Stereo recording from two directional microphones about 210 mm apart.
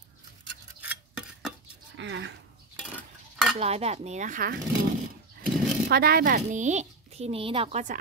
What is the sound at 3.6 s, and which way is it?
A child's voice, 30° right (ahead or behind).